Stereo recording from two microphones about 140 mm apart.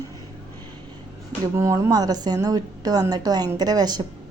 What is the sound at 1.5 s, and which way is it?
A woman's voice, 20° right (ahead or behind).